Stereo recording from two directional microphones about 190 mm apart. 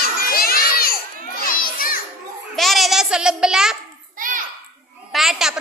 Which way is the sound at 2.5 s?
Centre (ahead or behind).